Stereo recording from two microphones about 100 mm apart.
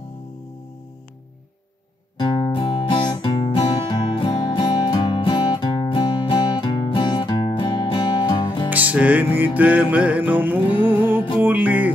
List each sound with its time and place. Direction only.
2.1 s music: 45° left (ahead or behind)
8.6 s music: 15° right (ahead or behind)